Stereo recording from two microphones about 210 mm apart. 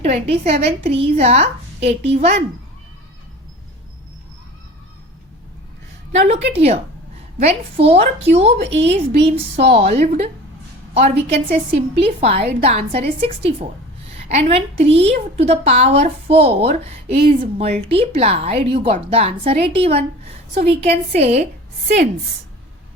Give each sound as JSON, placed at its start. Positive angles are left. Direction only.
{"t": 0.0, "sound": "a woman's voice", "side_deg": -30}
{"t": 6.1, "sound": "a woman's voice", "side_deg": -35}